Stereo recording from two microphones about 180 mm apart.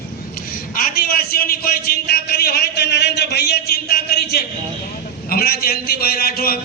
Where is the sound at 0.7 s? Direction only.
55° left (ahead or behind).